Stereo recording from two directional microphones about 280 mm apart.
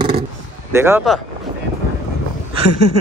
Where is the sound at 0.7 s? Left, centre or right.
Centre.